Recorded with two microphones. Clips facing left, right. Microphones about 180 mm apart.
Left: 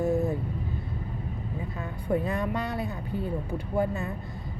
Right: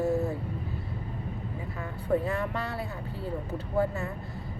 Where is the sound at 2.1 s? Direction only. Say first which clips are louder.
Even; 15° left (ahead or behind).